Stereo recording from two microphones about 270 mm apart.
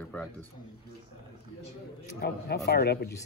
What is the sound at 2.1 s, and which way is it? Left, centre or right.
Speech, left.